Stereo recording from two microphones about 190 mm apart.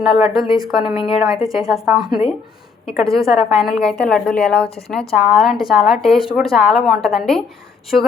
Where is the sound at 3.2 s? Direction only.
Centre (ahead or behind).